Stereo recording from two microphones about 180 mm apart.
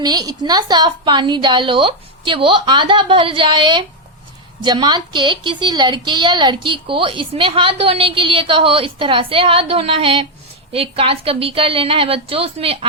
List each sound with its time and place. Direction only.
0.0 s a woman's voice: 20° right (ahead or behind)